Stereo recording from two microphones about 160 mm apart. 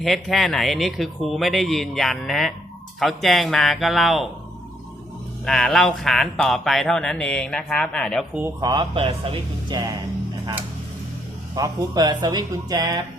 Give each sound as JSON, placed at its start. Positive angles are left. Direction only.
{"t": 0.0, "sound": "speech", "side_deg": 0}
{"t": 5.5, "sound": "speech", "side_deg": 5}
{"t": 8.6, "sound": "speech", "side_deg": -25}
{"t": 11.5, "sound": "speech", "side_deg": -25}